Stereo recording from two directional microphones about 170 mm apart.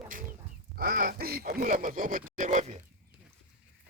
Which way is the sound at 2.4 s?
45° right (ahead or behind).